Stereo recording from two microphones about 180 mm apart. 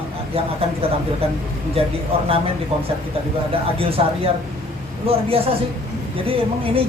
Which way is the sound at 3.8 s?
30° right (ahead or behind).